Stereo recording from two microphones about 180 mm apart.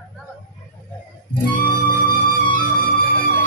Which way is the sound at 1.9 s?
45° left (ahead or behind).